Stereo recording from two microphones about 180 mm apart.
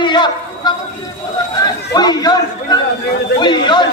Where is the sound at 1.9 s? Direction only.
20° left (ahead or behind).